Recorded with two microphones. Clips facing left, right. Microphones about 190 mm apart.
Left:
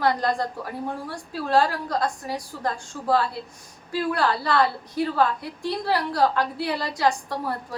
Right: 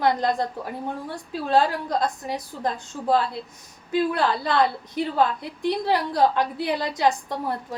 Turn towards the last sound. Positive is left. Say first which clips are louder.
# right 1 dB
turn(degrees=-20)  # may be behind; listen again after turning